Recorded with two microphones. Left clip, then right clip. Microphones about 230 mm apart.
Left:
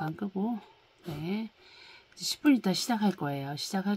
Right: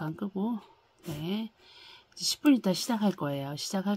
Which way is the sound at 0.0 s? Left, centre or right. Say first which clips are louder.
Left 1 dB; centre.